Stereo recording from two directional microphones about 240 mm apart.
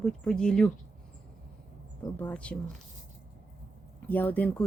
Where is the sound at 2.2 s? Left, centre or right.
Centre.